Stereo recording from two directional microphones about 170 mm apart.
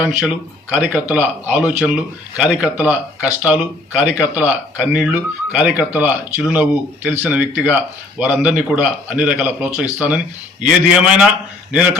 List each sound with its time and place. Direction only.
0.0 s speech: 5° right (ahead or behind)